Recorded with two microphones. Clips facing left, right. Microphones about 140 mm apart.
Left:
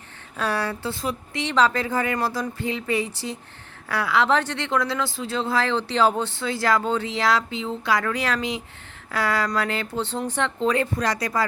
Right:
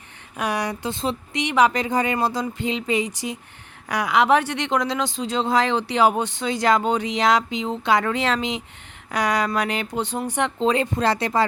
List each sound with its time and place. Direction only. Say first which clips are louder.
0.3 s speech: right 1 dB; 15° right (ahead or behind)